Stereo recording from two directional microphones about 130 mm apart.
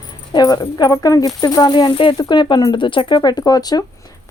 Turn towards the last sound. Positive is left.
turn(degrees=30)  # may be behind; listen again after turning